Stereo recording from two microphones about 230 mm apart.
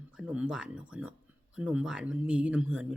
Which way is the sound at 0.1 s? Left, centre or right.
Centre.